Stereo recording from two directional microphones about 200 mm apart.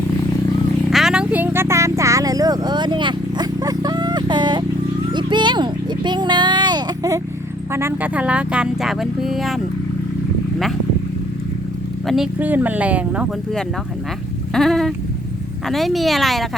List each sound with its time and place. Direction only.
0.9 s a sound: centre (ahead or behind); by 7.2 s 20° right (ahead or behind)
7.7 s speech: 10° right (ahead or behind)
12.0 s speech: centre (ahead or behind)
14.5 s cat: centre (ahead or behind)
15.6 s speech: centre (ahead or behind)